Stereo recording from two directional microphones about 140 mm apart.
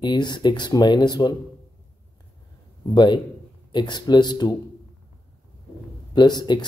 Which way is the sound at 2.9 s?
30° left (ahead or behind).